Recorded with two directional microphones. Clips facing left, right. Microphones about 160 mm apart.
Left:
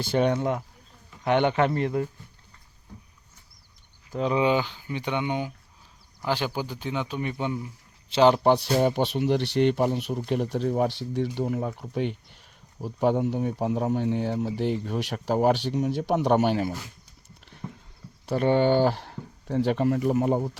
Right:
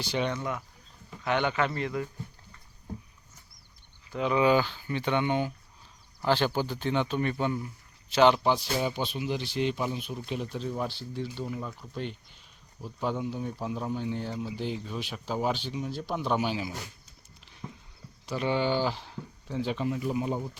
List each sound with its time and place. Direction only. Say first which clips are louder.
0.0 s speech: left 7 dB; 50° left (ahead or behind)
0.3 s speech: left 7 dB; 35° left (ahead or behind)
1.2 s speech: left 5 dB; 55° left (ahead or behind)
4.1 s speech: left 1 dB; 30° left (ahead or behind); by 7.7 s 15° left (ahead or behind)
8.1 s speech: left 2 dB; 30° left (ahead or behind)
8.4 s speech: left 6 dB; 65° left (ahead or behind)
17.6 s horse: left 4 dB; centre (ahead or behind)
18.3 s speech: left 7 dB; 55° left (ahead or behind)